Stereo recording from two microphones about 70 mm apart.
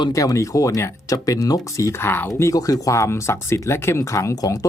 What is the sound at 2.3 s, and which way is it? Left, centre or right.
Speech, left.